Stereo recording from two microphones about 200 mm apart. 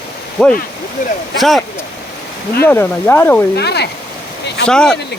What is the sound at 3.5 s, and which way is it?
Speech, 55° left (ahead or behind).